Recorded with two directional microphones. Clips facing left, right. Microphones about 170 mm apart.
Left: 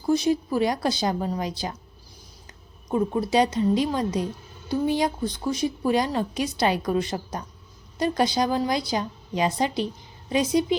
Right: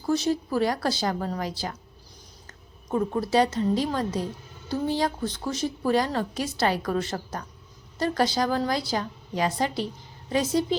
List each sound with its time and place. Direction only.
0.0 s a woman's voice: 15° left (ahead or behind)
2.9 s a woman's voice: 15° left (ahead or behind)